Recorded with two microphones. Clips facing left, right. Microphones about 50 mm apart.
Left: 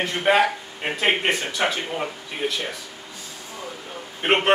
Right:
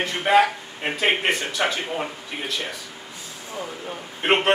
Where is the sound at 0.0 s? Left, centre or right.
Centre.